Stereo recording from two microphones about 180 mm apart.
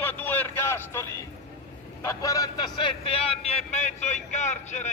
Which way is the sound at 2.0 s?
20° left (ahead or behind).